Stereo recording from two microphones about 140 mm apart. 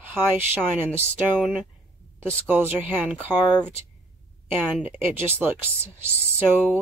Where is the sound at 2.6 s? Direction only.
10° right (ahead or behind).